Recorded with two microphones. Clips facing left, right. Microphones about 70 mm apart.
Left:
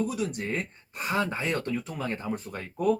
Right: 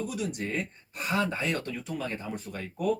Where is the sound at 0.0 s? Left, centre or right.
Left.